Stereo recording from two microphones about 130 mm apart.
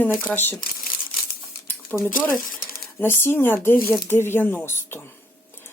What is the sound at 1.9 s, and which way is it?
Speech, 10° left (ahead or behind).